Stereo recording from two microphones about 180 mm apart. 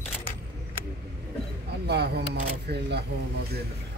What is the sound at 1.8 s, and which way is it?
Speech, 65° right (ahead or behind).